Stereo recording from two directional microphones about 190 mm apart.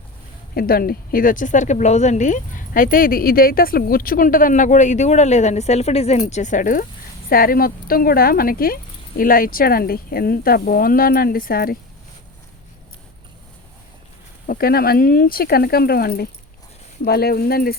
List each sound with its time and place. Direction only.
0.5 s speech: 50° left (ahead or behind)
14.4 s speech: 50° left (ahead or behind)